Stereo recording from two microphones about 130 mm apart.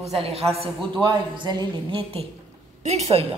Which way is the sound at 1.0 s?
35° right (ahead or behind).